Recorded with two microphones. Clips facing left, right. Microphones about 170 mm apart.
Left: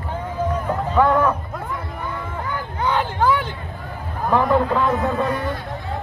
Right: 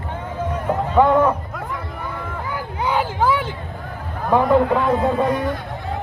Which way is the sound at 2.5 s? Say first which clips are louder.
Even; 10° right (ahead or behind).